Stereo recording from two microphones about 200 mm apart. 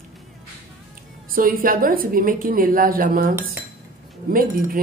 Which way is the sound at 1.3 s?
45° right (ahead or behind).